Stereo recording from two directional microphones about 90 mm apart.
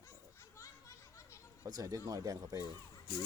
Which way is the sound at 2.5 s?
50° left (ahead or behind).